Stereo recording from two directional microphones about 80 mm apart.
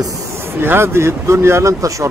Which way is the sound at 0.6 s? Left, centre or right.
Right.